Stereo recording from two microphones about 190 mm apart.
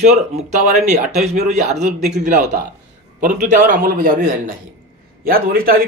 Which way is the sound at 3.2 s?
45° right (ahead or behind).